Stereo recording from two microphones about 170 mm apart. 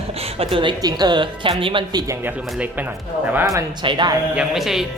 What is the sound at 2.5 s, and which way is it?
Speech, 10° right (ahead or behind).